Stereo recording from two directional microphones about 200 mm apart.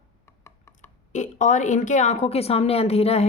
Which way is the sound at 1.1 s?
35° left (ahead or behind).